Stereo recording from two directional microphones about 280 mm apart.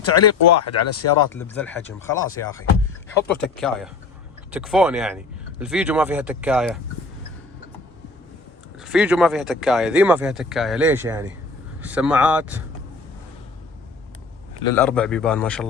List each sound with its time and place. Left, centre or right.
0.0 s speech: left
1.3 s speech: centre
3.2 s speech: centre
8.8 s speech: centre
14.7 s speech: centre